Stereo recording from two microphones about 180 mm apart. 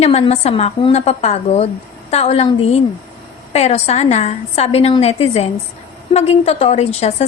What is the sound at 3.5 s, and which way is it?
A woman's voice, 35° left (ahead or behind).